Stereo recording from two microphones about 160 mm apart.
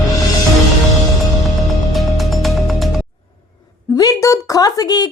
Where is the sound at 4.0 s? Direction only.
20° left (ahead or behind).